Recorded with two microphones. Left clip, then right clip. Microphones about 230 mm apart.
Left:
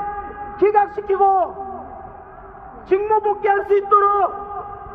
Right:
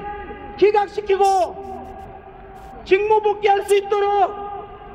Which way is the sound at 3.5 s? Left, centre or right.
Right.